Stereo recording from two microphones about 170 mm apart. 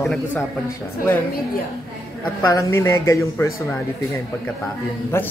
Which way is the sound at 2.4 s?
15° left (ahead or behind).